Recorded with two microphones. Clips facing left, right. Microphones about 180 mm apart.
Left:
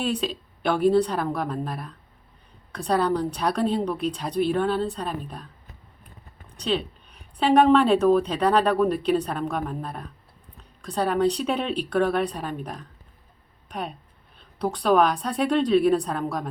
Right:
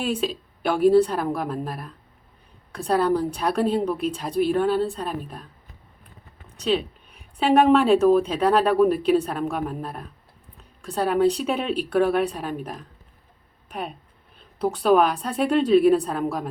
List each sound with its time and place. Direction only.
0.0 s a woman's voice: 5° right (ahead or behind)
6.6 s a woman's voice: 5° right (ahead or behind)